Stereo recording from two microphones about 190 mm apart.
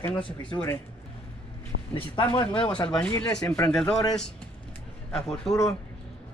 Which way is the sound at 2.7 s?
5° left (ahead or behind).